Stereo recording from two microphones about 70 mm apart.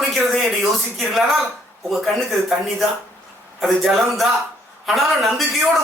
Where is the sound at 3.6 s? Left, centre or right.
Centre.